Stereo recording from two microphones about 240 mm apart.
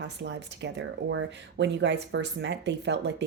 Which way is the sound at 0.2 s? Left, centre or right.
Right.